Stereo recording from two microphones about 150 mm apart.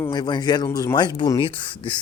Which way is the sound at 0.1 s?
25° left (ahead or behind).